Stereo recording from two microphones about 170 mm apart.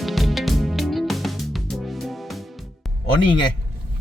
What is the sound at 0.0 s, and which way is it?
Music, centre (ahead or behind).